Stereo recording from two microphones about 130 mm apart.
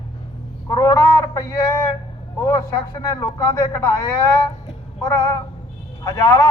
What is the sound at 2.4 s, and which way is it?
A man's voice, 25° left (ahead or behind).